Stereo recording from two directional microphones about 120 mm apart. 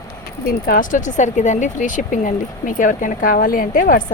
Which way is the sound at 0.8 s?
90° left.